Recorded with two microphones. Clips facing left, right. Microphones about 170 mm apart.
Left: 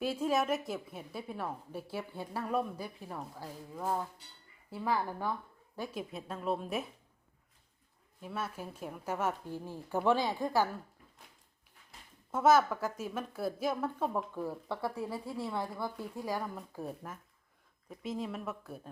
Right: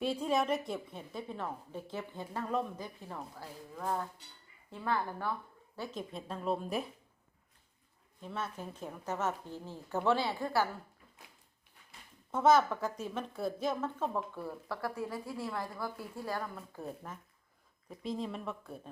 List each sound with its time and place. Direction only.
0.0 s a woman's voice: centre (ahead or behind)
8.2 s a woman's voice: 5° left (ahead or behind)
12.3 s a woman's voice: 5° left (ahead or behind)
15.0 s a woman's voice: centre (ahead or behind)
16.1 s a woman's voice: 15° left (ahead or behind)